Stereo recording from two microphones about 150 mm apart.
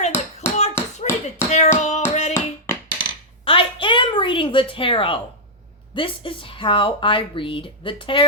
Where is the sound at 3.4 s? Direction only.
35° left (ahead or behind).